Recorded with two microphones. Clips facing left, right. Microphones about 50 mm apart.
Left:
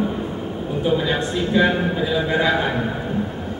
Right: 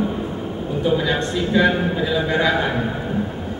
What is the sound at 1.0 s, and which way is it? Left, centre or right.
Speech, centre.